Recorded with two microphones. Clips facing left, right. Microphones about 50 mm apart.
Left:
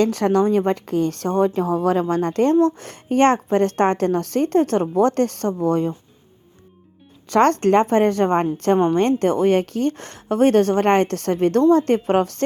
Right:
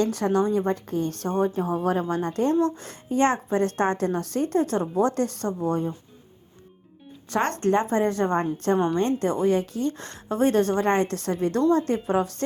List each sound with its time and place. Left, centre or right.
0.0 s a woman's voice: left
2.6 s a woman's voice: left
7.3 s speech: left
7.6 s a woman's voice: left
9.9 s a woman's voice: left